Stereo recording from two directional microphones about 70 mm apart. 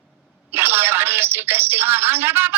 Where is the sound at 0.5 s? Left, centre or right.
Right.